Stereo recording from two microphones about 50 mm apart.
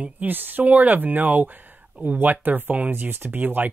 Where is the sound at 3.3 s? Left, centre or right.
Right.